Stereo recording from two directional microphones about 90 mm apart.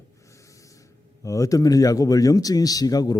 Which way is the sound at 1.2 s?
40° left (ahead or behind).